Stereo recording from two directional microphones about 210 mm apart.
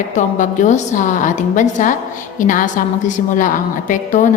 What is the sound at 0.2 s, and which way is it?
A woman's voice, 35° left (ahead or behind).